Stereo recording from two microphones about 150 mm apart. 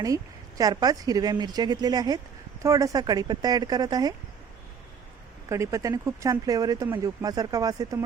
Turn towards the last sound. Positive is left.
turn(degrees=-25)  # may be behind; listen again after turning